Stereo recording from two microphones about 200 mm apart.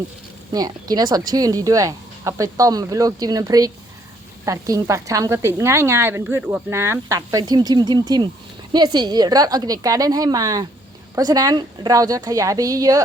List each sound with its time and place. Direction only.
0.5 s a woman's voice: 20° right (ahead or behind)